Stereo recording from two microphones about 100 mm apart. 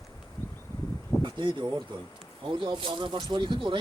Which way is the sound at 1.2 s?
50° right (ahead or behind).